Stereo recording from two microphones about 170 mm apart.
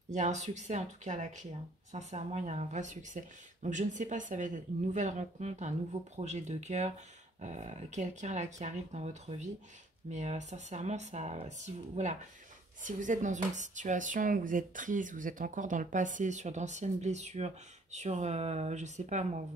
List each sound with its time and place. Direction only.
0.1 s speech: 45° right (ahead or behind)